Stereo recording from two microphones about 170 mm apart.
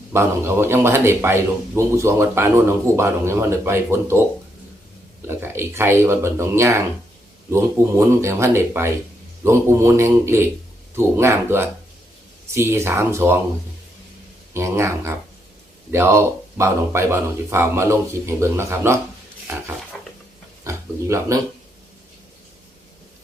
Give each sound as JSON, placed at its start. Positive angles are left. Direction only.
{"t": 0.1, "sound": "a man's voice", "side_deg": -15}
{"t": 5.3, "sound": "a man's voice", "side_deg": -15}
{"t": 14.5, "sound": "a man's voice", "side_deg": -15}
{"t": 20.7, "sound": "speech", "side_deg": -15}